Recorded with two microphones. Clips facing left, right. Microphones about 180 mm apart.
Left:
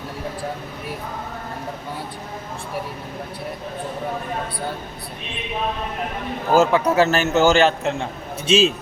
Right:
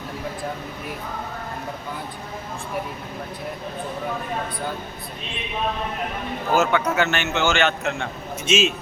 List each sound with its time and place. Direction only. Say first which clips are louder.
6.5 s a man's voice: left 4 dB; 30° left (ahead or behind)